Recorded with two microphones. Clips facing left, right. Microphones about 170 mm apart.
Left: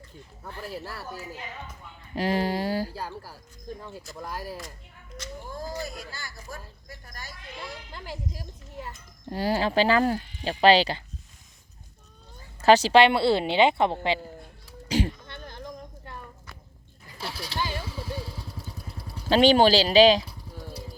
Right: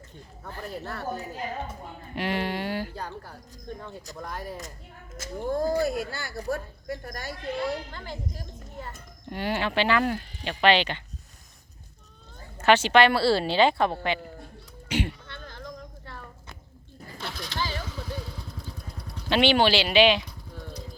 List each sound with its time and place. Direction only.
0.6 s speech: 5° left (ahead or behind)
1.0 s speech: 45° right (ahead or behind)
2.1 s speech: 35° left (ahead or behind)
2.9 s speech: 5° left (ahead or behind)
5.4 s a woman's voice: 55° right (ahead or behind)
7.9 s speech: 10° left (ahead or behind)
9.3 s speech: 35° left (ahead or behind)
12.6 s speech: 35° left (ahead or behind)
14.8 s speech: 35° left (ahead or behind)
15.3 s a sound: 20° left (ahead or behind)
17.2 s vehicle: 10° left (ahead or behind)
19.3 s speech: 40° left (ahead or behind)
20.6 s vehicle: 10° left (ahead or behind)